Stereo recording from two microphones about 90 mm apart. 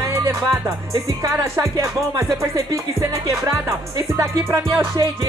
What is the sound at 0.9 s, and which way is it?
Music, 35° right (ahead or behind).